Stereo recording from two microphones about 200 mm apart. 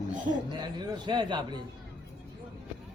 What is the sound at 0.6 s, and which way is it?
Speech, 20° right (ahead or behind).